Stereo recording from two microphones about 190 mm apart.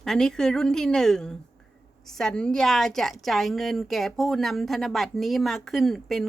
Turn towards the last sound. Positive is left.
turn(degrees=0)  # may be behind; listen again after turning